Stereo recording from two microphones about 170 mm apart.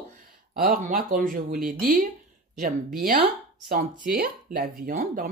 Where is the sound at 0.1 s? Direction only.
55° right (ahead or behind).